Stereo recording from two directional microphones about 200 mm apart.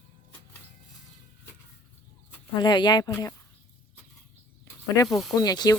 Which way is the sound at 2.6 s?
20° left (ahead or behind).